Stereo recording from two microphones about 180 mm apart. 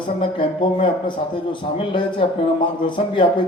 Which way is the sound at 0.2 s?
30° left (ahead or behind).